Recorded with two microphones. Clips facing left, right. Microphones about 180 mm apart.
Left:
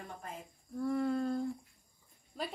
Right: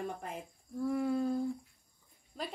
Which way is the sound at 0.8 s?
5° right (ahead or behind).